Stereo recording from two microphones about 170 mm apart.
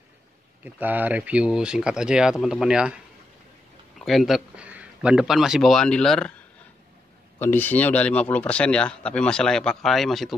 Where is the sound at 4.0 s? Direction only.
Centre (ahead or behind).